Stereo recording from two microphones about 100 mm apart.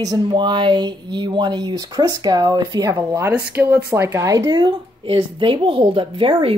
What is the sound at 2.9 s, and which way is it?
Speech, 30° right (ahead or behind).